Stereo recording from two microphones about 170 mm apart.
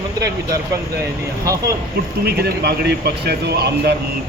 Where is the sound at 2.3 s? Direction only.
65° right (ahead or behind).